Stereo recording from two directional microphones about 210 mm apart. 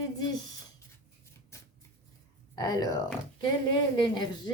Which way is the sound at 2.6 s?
15° left (ahead or behind).